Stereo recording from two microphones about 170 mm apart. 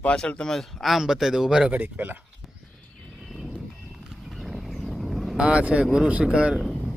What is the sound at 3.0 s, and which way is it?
Livestock, centre (ahead or behind).